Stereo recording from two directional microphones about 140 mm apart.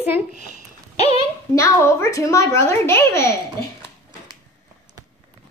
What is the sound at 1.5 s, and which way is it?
Speech, 20° left (ahead or behind).